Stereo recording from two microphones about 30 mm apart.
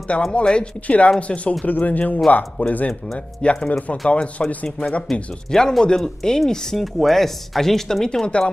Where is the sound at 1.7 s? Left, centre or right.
Left.